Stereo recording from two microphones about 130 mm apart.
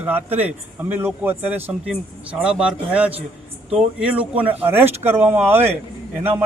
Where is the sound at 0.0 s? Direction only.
15° right (ahead or behind).